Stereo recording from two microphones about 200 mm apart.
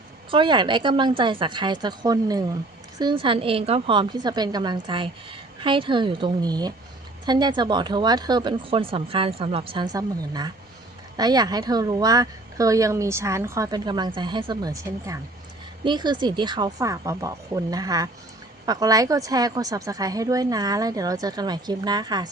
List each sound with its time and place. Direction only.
0.3 s a woman's voice: 25° right (ahead or behind)